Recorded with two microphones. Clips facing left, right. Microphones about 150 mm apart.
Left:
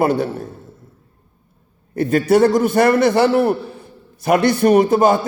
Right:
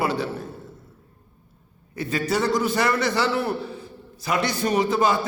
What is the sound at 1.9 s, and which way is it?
A man's voice, 55° left (ahead or behind).